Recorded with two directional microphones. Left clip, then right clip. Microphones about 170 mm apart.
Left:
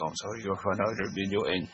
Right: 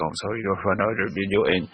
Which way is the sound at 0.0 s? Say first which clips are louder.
Right 7 dB; 30° right (ahead or behind).